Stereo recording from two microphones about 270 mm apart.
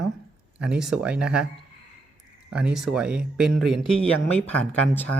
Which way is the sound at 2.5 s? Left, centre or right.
Centre.